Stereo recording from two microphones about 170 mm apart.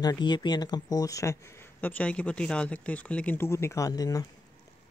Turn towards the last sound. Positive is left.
turn(degrees=20)  # may be behind; listen again after turning